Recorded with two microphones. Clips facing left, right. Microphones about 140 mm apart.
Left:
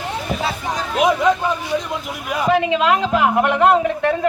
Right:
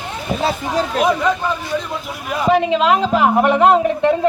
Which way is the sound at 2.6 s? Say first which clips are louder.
Right 2 dB; 25° right (ahead or behind).